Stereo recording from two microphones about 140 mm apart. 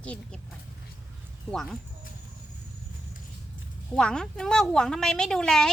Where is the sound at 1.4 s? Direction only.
5° left (ahead or behind).